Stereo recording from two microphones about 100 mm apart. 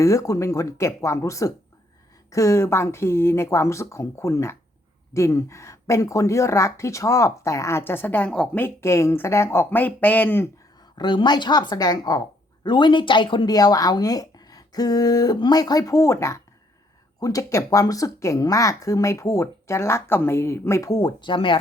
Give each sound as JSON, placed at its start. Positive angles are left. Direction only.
{"t": 0.0, "sound": "speech", "side_deg": 30}
{"t": 10.9, "sound": "a woman's voice", "side_deg": 50}
{"t": 13.5, "sound": "speech", "side_deg": 40}
{"t": 21.2, "sound": "speech", "side_deg": 55}